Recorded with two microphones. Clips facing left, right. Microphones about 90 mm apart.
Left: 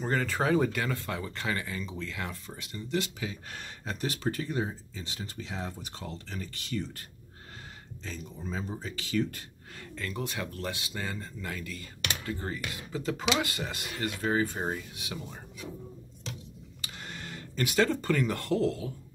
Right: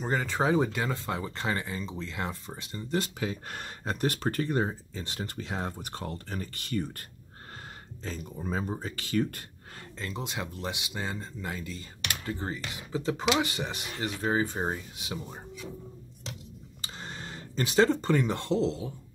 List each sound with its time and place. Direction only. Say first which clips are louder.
0.0 s speech: right 1 dB; 15° right (ahead or behind); by 9.4 s 50° right (ahead or behind)
9.8 s speech: left 1 dB; 25° right (ahead or behind)
16.8 s speech: right 2 dB; 30° right (ahead or behind)